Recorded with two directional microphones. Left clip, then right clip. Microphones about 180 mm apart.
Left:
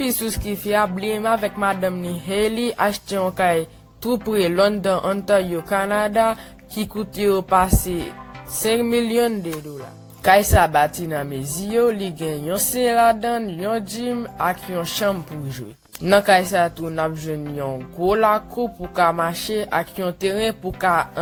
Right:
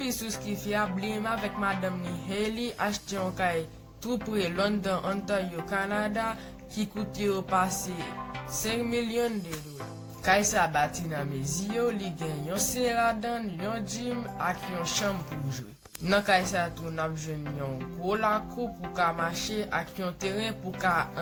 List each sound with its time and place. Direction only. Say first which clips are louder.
0.0 s speech: left 9 dB; 55° left (ahead or behind)